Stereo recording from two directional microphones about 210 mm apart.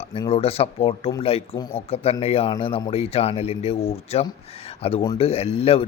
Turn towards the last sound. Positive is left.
turn(degrees=30)  # may be behind; listen again after turning